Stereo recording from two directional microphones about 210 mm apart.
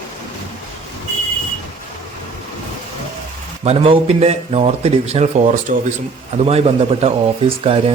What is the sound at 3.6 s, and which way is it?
A man's voice, 25° right (ahead or behind).